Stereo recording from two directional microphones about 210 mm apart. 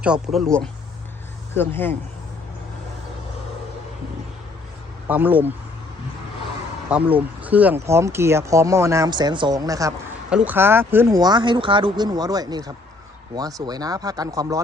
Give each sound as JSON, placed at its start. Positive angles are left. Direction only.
{"t": 0.0, "sound": "speech", "side_deg": -5}
{"t": 5.0, "sound": "speech", "side_deg": -10}
{"t": 6.9, "sound": "speech", "side_deg": -5}